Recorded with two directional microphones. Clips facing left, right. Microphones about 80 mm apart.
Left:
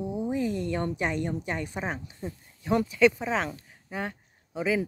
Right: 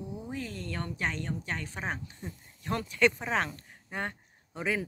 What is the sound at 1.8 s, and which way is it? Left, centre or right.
Speech, centre.